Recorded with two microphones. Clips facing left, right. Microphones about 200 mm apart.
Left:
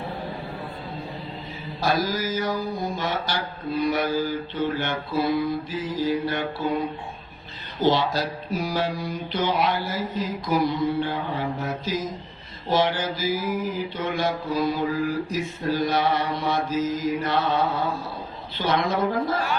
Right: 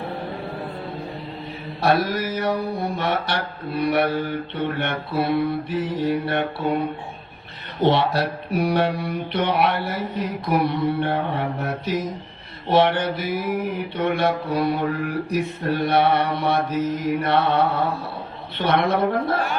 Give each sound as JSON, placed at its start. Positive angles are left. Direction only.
{"t": 1.8, "sound": "mantra", "side_deg": -65}
{"t": 7.8, "sound": "mantra", "side_deg": -65}